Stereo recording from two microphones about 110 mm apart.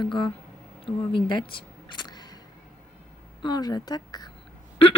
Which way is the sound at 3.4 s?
40° left (ahead or behind).